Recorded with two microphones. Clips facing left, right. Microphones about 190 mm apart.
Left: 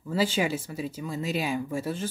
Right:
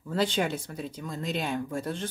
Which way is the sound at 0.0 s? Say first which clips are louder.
Left 1 dB; 5° left (ahead or behind).